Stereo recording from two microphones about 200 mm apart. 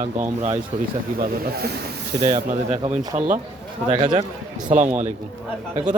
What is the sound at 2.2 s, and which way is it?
Speech, 30° right (ahead or behind).